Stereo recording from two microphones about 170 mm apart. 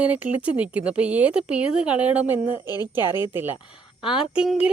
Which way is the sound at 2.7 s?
25° left (ahead or behind).